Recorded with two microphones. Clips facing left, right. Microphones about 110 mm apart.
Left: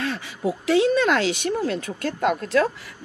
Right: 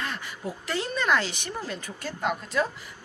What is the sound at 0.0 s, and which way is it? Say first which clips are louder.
Speech: left 8 dB; 90° left.